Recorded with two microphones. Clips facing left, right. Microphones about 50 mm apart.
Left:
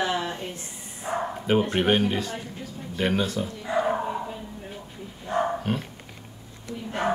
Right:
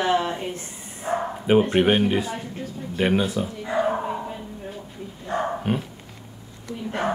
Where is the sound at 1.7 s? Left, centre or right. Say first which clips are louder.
Right 3 dB; centre.